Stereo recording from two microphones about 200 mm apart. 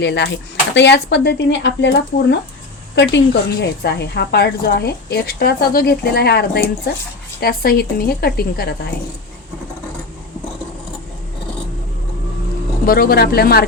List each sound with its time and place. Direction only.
0.0 s a woman's voice: 60° left (ahead or behind)
12.8 s a woman's voice: 50° left (ahead or behind)